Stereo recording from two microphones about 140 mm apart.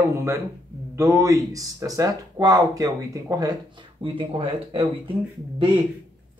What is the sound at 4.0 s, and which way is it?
Speech, 35° right (ahead or behind).